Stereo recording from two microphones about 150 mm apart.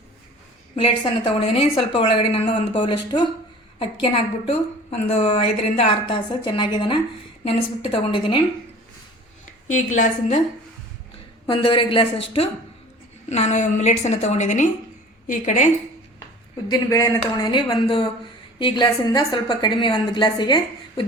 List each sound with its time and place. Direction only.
0.8 s a woman's voice: 40° left (ahead or behind)
9.6 s a woman's voice: 55° left (ahead or behind)
11.4 s a woman's voice: 35° left (ahead or behind); by 15.7 s 55° left (ahead or behind)
16.6 s a woman's voice: 25° left (ahead or behind)